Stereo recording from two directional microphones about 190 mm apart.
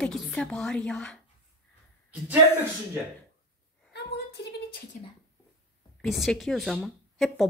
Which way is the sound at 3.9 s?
60° left (ahead or behind).